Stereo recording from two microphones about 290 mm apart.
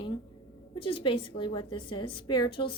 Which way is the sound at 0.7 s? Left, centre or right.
Centre.